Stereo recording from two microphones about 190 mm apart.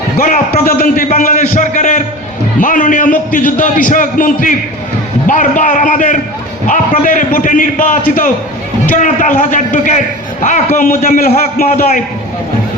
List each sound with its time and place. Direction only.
0.2 s a man's voice: 45° left (ahead or behind)